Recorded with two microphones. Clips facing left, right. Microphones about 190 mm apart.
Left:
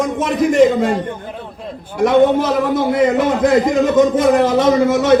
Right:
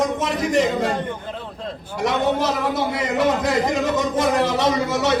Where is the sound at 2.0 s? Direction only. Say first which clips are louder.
Left 9 dB; 50° left (ahead or behind).